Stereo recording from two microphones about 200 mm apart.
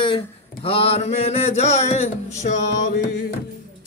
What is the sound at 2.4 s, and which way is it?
Music, 40° left (ahead or behind).